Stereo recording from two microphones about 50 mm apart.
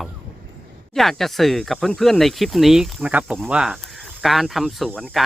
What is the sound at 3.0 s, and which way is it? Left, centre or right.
Cricket, right.